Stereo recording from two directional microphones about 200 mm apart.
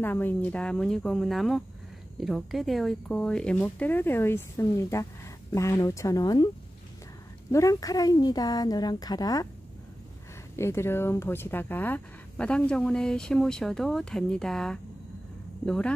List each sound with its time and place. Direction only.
0.0 s speech: 10° left (ahead or behind)
7.5 s a woman's voice: 15° left (ahead or behind)
10.5 s speech: 15° left (ahead or behind)